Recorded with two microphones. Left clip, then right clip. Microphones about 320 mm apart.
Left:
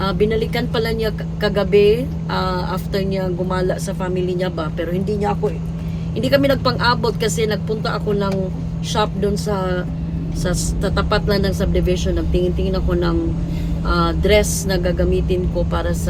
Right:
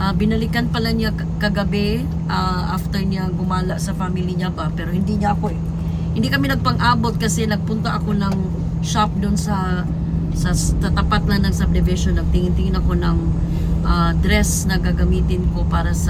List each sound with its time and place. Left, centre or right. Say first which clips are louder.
0.0 s speech: left 4 dB; centre
5.0 s speech: right 1 dB; centre